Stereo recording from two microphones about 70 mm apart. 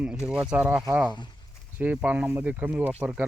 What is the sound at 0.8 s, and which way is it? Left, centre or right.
Speech, right.